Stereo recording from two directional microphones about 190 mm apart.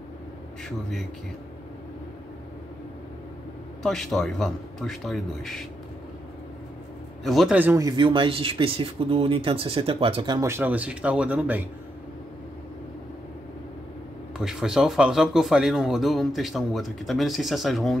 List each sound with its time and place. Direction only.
3.8 s speech: centre (ahead or behind)
7.2 s speech: centre (ahead or behind)
14.4 s speech: 5° right (ahead or behind)